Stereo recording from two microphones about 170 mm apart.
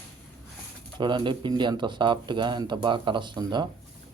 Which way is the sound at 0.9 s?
25° right (ahead or behind).